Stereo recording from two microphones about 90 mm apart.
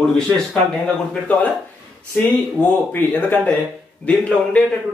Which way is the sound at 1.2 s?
15° left (ahead or behind).